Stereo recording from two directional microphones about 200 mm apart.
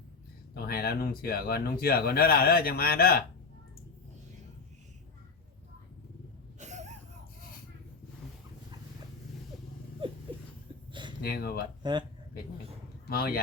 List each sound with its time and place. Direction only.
0.5 s speech: 50° left (ahead or behind)
6.6 s a sound: 35° right (ahead or behind)
10.0 s a sound: 25° right (ahead or behind)
11.2 s speech: 50° left (ahead or behind)
11.8 s speech: 20° right (ahead or behind)
13.1 s speech: 50° left (ahead or behind)